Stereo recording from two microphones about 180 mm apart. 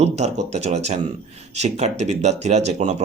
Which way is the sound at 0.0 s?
35° right (ahead or behind).